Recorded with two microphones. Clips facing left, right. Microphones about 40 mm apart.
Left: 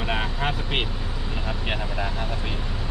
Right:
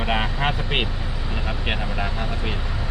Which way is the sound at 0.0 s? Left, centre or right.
Right.